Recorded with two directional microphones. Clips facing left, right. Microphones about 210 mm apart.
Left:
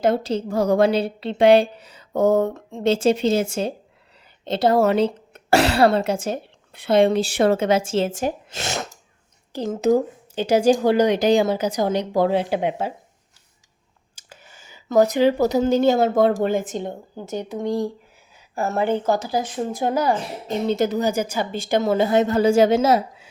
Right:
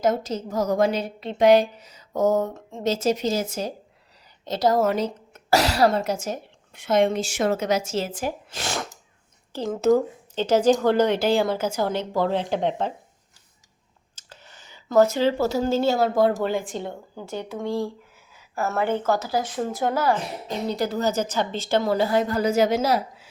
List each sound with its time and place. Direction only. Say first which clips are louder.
0.2 s a woman's voice: left 4 dB; 30° left (ahead or behind); by 12.9 s 10° left (ahead or behind)
14.2 s a woman's voice: left 1 dB; 10° left (ahead or behind)